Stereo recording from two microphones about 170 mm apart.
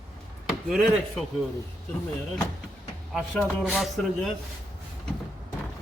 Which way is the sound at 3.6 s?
5° right (ahead or behind).